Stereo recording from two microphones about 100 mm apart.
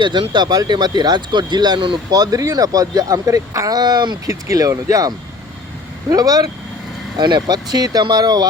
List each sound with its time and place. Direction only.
0.0 s speech: 50° right (ahead or behind)
2.1 s speech: 40° right (ahead or behind)
4.3 s speech: 35° right (ahead or behind)